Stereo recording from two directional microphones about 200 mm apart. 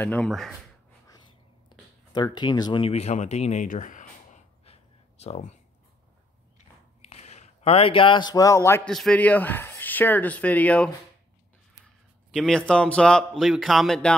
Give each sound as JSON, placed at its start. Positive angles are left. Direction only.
{"t": 0.0, "sound": "speech", "side_deg": 5}
{"t": 1.7, "sound": "speech", "side_deg": 20}
{"t": 4.6, "sound": "a sound", "side_deg": 35}
{"t": 7.1, "sound": "a man's voice", "side_deg": 35}